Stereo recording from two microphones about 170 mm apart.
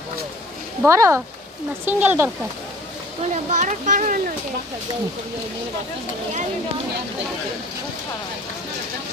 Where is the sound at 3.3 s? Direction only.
45° right (ahead or behind).